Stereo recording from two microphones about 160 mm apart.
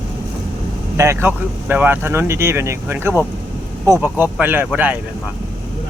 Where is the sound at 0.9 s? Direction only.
15° right (ahead or behind).